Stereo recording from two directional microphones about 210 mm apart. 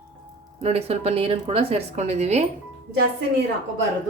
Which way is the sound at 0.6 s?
30° right (ahead or behind).